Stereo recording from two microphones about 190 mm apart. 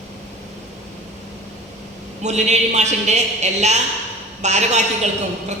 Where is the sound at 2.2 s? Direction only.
35° right (ahead or behind).